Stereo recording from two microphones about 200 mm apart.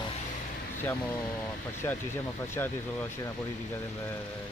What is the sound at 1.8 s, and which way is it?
Speech, 25° left (ahead or behind).